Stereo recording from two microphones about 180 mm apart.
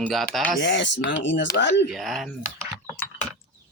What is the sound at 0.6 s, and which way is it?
Speech, 80° left.